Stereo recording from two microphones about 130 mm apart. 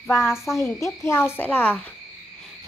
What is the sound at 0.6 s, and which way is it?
A woman's voice, 20° left (ahead or behind).